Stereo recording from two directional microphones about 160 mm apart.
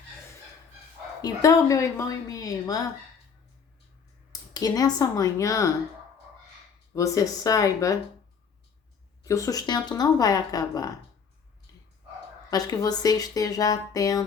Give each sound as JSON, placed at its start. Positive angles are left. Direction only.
{"t": 1.2, "sound": "speech", "side_deg": 20}
{"t": 4.3, "sound": "speech", "side_deg": 25}
{"t": 6.9, "sound": "speech", "side_deg": 20}
{"t": 9.2, "sound": "speech", "side_deg": 20}
{"t": 12.5, "sound": "speech", "side_deg": 25}